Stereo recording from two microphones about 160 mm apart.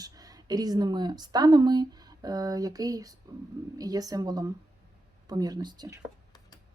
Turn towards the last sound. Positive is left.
turn(degrees=-25)  # may be behind; listen again after turning